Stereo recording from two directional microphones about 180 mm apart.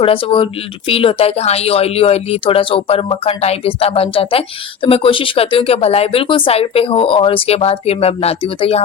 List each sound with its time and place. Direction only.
0.0 s speech: 30° left (ahead or behind)